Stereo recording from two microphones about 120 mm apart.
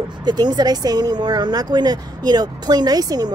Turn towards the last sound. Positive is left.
turn(degrees=-35)  # may be behind; listen again after turning